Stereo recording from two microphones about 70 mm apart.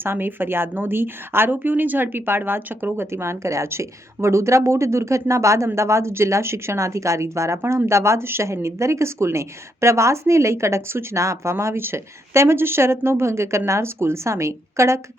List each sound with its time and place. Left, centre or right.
0.0 s a woman's voice: right